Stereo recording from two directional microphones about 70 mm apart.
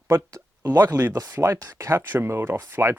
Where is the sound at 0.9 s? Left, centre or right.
Right.